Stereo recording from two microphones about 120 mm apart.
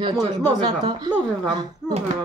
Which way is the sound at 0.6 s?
40° right (ahead or behind).